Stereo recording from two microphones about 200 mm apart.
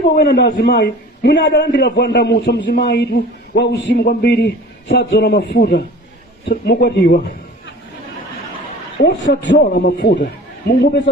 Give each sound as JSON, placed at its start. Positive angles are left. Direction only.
{"t": 0.1, "sound": "a man's voice", "side_deg": 55}
{"t": 9.0, "sound": "a man's voice", "side_deg": 55}